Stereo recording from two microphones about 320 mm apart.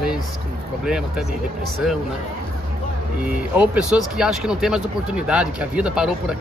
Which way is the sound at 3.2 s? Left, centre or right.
Centre.